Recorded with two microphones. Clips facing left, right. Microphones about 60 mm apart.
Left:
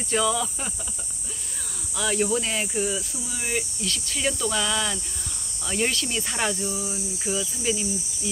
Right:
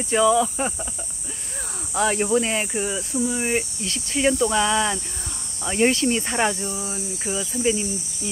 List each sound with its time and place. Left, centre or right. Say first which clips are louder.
0.1 s speech: right 6 dB; centre
2.0 s speech: right 4 dB; right